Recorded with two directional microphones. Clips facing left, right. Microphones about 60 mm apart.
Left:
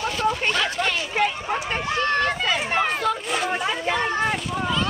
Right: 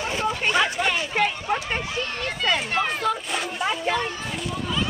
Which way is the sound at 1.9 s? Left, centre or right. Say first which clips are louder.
Left 7 dB; left.